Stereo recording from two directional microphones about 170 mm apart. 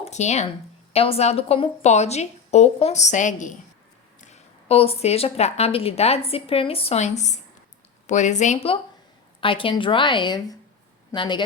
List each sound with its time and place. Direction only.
0.0 s a woman's voice: 40° left (ahead or behind)